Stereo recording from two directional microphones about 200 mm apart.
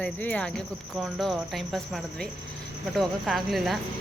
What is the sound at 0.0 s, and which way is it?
Speech, 5° left (ahead or behind).